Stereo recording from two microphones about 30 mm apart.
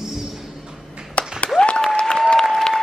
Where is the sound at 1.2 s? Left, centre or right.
Left.